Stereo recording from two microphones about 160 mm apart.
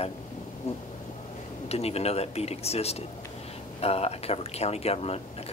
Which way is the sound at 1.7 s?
40° left (ahead or behind).